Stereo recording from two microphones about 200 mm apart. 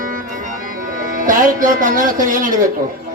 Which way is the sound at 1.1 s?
40° right (ahead or behind).